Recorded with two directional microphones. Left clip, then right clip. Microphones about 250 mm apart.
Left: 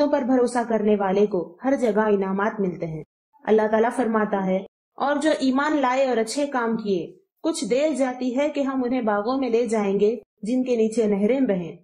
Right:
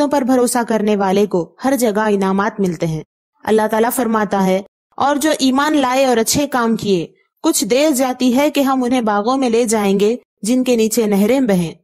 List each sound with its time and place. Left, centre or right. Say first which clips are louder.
0.0 s speech: right 6 dB; right